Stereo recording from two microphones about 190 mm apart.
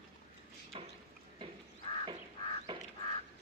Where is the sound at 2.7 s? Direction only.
25° right (ahead or behind).